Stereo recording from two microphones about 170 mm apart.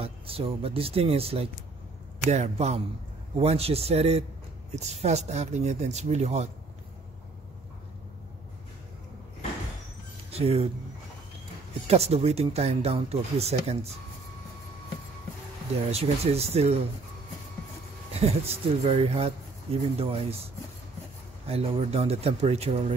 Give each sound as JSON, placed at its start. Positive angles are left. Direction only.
{"t": 0.0, "sound": "speech", "side_deg": -35}
{"t": 10.3, "sound": "speech", "side_deg": -35}
{"t": 11.9, "sound": "speech", "side_deg": -35}
{"t": 15.9, "sound": "speech", "side_deg": -35}
{"t": 18.1, "sound": "speech", "side_deg": -35}
{"t": 21.5, "sound": "speech", "side_deg": -35}